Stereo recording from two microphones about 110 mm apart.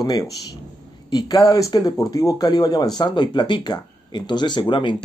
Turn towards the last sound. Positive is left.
turn(degrees=50)  # may be behind; listen again after turning